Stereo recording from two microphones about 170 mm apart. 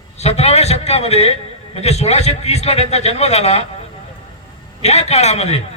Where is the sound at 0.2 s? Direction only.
40° left (ahead or behind).